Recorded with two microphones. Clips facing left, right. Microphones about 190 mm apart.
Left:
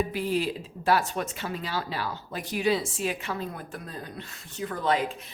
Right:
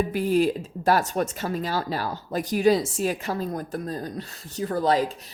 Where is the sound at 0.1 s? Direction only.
45° right (ahead or behind).